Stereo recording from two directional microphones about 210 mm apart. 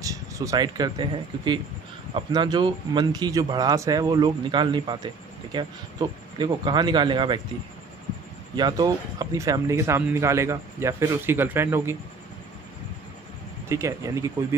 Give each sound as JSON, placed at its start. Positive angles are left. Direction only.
{"t": 0.0, "sound": "speech", "side_deg": -15}
{"t": 8.5, "sound": "speech", "side_deg": -20}
{"t": 13.7, "sound": "speech", "side_deg": -15}